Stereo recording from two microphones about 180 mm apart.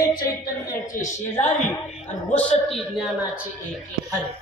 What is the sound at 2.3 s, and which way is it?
A man's voice, centre (ahead or behind).